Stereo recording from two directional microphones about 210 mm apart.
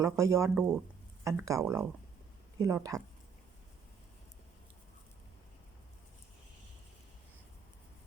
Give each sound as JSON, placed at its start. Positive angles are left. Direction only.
{"t": 0.0, "sound": "speech", "side_deg": -15}